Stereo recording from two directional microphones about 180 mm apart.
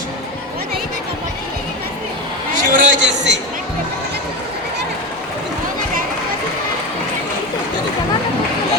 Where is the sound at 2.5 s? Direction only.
45° right (ahead or behind).